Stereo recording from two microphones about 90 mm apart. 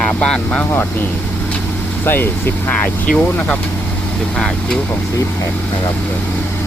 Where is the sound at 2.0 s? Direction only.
25° left (ahead or behind).